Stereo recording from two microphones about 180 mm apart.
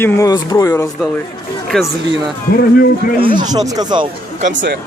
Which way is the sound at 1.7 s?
5° left (ahead or behind).